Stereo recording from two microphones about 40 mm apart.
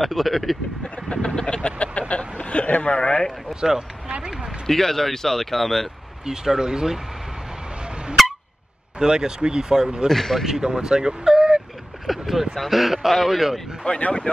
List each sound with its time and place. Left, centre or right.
0.0 s speech: centre
1.0 s speech: left
3.4 s speech: centre
4.6 s speech: centre
6.2 s speech: centre
8.2 s a sound: centre
9.0 s speech: centre
10.0 s speech: centre
10.4 s speech: centre
12.1 s speech: centre
13.8 s speech: left